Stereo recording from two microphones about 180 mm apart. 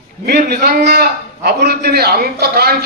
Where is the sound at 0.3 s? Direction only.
65° right (ahead or behind).